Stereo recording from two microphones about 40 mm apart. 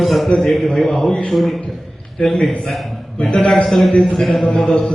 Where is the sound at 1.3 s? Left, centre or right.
Centre.